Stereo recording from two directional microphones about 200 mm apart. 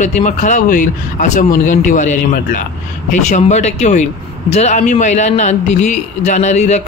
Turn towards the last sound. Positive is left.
turn(degrees=35)  # may be behind; listen again after turning